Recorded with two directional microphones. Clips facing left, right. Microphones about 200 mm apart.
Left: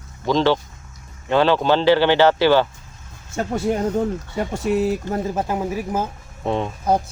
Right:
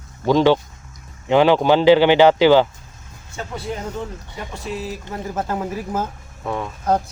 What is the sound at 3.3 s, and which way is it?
Speech, 50° left (ahead or behind).